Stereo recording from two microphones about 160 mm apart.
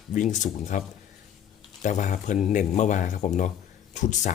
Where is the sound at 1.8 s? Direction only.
50° left (ahead or behind).